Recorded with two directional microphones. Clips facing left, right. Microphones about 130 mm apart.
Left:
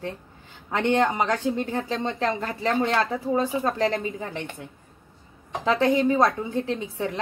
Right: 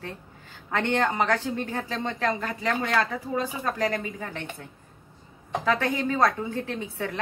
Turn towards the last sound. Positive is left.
turn(degrees=20)  # may be behind; listen again after turning